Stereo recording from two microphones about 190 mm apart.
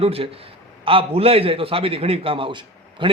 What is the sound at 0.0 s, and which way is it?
Speech, 30° right (ahead or behind).